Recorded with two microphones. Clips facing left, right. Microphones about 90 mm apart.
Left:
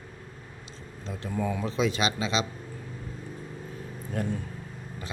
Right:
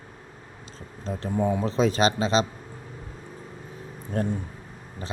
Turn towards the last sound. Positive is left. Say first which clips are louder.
# right 4 dB
turn(degrees=-35)  # may be behind; listen again after turning